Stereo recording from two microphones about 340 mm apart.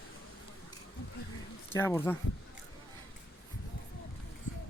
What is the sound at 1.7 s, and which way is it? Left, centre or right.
Speech, centre.